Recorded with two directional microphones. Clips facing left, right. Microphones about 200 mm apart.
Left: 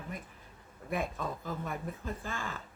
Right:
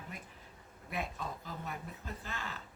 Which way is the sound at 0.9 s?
50° left (ahead or behind).